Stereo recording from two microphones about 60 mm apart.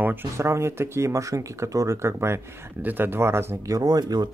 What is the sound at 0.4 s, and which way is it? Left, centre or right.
Speech, right.